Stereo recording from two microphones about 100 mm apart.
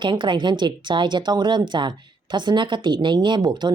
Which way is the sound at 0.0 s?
55° right (ahead or behind).